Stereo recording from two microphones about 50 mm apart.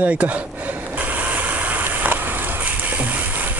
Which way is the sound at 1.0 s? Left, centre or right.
Right.